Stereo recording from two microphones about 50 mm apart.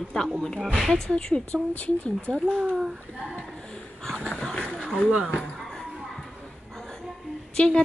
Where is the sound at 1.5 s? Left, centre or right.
Left.